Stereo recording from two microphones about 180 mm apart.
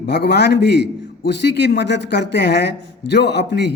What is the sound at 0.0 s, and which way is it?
A man's voice, 70° left (ahead or behind).